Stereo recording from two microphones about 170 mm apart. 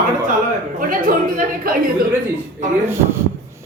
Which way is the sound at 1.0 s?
55° right (ahead or behind).